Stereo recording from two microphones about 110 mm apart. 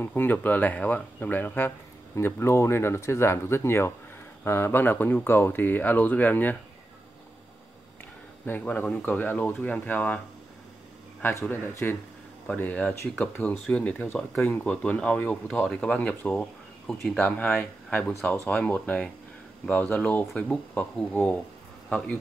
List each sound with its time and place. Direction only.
0.0 s speech: 20° left (ahead or behind)
8.5 s speech: 15° left (ahead or behind)
11.2 s speech: 20° left (ahead or behind)